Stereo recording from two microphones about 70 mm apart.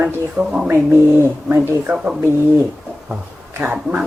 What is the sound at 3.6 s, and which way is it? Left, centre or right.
Speech, right.